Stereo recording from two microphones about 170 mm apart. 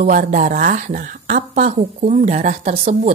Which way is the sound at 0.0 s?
50° right (ahead or behind).